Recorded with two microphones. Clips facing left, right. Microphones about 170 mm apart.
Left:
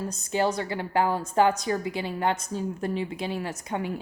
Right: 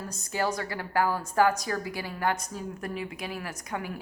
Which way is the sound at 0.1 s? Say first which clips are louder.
Left 3 dB; 25° left (ahead or behind).